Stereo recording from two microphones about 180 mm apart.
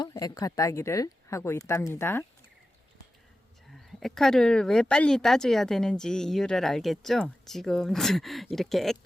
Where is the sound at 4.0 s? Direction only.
Centre (ahead or behind).